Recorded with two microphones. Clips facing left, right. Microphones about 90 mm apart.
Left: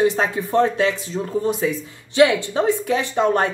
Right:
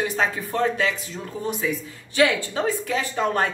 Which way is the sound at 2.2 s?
20° left (ahead or behind).